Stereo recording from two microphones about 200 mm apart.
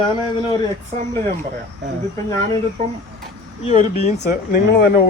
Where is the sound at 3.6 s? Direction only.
35° left (ahead or behind).